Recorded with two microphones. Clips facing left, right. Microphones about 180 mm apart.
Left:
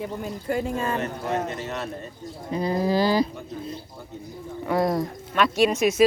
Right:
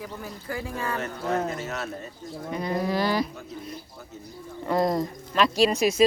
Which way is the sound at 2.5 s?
30° left (ahead or behind).